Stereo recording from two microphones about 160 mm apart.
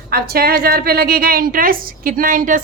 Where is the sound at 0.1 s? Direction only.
70° right (ahead or behind).